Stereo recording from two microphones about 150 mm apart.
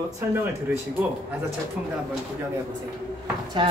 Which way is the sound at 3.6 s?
35° right (ahead or behind).